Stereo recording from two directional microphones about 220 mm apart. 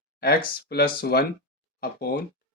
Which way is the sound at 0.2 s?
45° left (ahead or behind).